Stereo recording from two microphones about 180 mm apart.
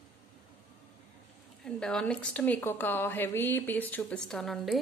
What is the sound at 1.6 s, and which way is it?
A woman's voice, 5° left (ahead or behind).